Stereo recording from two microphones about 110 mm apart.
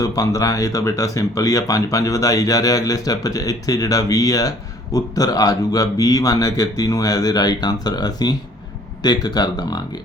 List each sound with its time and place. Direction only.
0.0 s speech: 30° left (ahead or behind)